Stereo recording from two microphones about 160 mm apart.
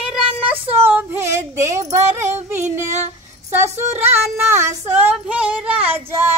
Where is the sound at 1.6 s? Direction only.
20° right (ahead or behind).